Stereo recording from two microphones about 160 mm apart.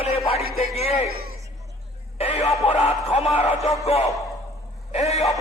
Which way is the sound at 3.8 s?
40° left (ahead or behind).